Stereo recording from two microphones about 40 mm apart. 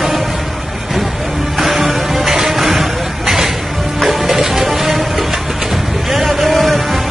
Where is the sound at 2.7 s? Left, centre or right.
Centre.